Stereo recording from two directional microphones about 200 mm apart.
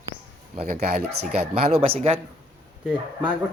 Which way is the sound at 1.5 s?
30° right (ahead or behind).